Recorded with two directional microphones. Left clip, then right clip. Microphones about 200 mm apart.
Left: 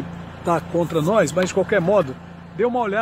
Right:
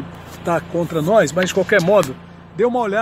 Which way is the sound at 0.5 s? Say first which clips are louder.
Right 1 dB; centre (ahead or behind).